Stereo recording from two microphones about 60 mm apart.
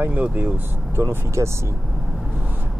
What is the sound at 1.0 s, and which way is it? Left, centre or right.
Speech, right.